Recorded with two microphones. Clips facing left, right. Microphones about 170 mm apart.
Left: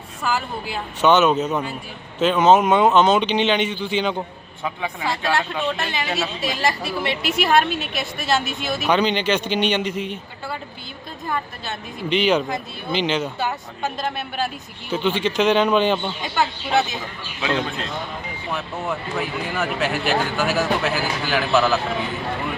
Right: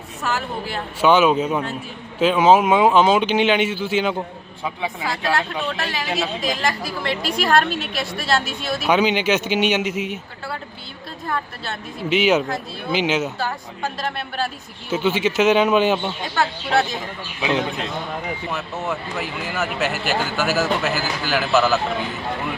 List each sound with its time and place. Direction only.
0.2 s speech: centre (ahead or behind)
5.0 s speech: centre (ahead or behind)
11.3 s speech: 5° left (ahead or behind)
12.0 s speech: 5° right (ahead or behind)
14.0 s speech: 5° left (ahead or behind)
14.8 s speech: 5° right (ahead or behind)
17.4 s speech: 15° right (ahead or behind)
18.5 s speech: centre (ahead or behind)